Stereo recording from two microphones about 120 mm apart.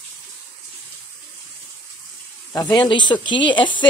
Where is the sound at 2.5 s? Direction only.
30° left (ahead or behind).